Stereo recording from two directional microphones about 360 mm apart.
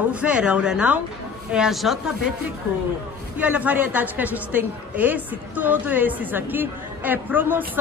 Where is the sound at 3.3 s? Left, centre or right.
Centre.